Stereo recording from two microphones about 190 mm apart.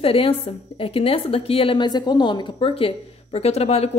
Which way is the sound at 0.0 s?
30° left (ahead or behind).